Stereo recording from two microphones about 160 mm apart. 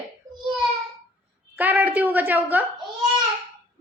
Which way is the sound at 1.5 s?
10° right (ahead or behind).